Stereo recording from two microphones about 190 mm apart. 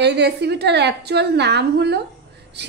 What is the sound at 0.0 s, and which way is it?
A woman's voice, 60° right (ahead or behind).